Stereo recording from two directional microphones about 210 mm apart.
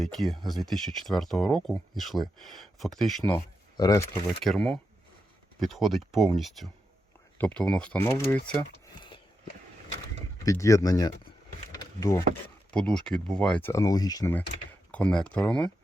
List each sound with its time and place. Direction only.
0.0 s speech: centre (ahead or behind)
3.8 s speech: 15° left (ahead or behind)
4.4 s speech: centre (ahead or behind)
10.4 s speech: 15° left (ahead or behind)
11.7 s a sound: 15° left (ahead or behind)
12.7 s speech: 5° left (ahead or behind)